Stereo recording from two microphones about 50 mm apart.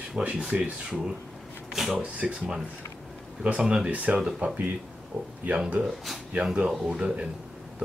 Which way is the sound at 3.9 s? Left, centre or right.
Right.